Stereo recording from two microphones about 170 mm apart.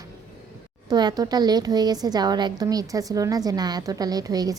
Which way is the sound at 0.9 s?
25° right (ahead or behind).